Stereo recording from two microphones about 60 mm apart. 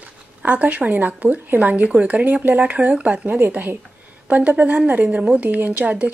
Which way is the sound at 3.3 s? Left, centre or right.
Right.